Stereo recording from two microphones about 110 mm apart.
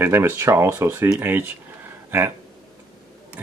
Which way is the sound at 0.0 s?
20° right (ahead or behind).